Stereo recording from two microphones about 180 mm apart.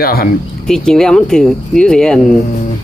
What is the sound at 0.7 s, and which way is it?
Speech, 5° left (ahead or behind).